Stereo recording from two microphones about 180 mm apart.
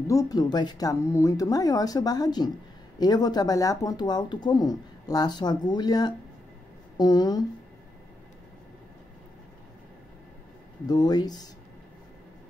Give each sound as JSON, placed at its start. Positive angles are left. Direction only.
{"t": 0.1, "sound": "speech", "side_deg": 20}
{"t": 10.9, "sound": "speech", "side_deg": 20}